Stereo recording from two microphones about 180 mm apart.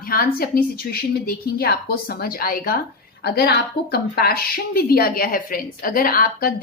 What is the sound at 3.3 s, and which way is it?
Speech, 65° left (ahead or behind).